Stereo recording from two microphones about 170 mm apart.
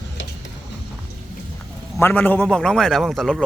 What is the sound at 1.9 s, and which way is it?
A man's voice, 10° left (ahead or behind).